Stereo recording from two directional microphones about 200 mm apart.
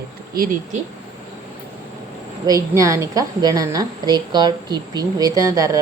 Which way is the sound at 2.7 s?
15° right (ahead or behind).